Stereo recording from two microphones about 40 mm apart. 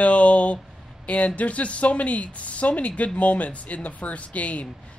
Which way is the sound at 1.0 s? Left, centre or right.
Left.